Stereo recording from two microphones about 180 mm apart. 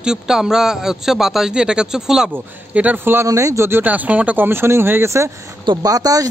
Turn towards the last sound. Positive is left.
turn(degrees=-20)  # may be behind; listen again after turning